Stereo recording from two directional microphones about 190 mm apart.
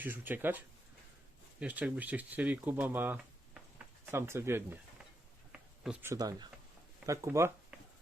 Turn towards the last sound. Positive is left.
turn(degrees=-15)  # may be behind; listen again after turning